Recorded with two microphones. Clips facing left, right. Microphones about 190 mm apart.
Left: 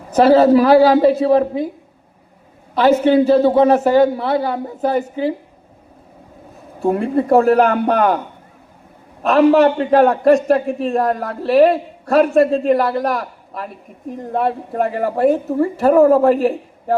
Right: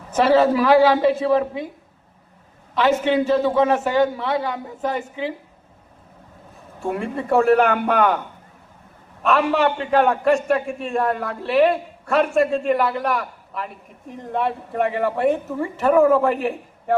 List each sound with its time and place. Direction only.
0.1 s a man's voice: 40° left (ahead or behind)
2.7 s a man's voice: 40° left (ahead or behind)
6.7 s a man's voice: 40° left (ahead or behind)
9.2 s a man's voice: 40° left (ahead or behind)